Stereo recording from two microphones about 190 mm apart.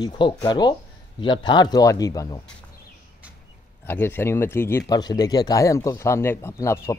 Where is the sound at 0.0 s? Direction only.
20° left (ahead or behind).